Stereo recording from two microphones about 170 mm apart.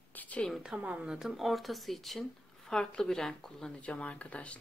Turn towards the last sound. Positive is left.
turn(degrees=10)  # may be behind; listen again after turning